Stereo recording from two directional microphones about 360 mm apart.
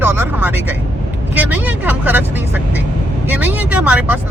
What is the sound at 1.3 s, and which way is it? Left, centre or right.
Speech, centre.